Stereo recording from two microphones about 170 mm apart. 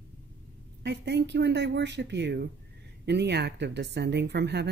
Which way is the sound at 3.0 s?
80° right.